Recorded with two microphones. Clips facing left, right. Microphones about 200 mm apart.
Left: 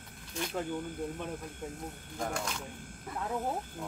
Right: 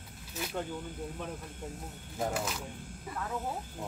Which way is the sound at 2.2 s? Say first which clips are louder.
Right 2 dB; 5° right (ahead or behind).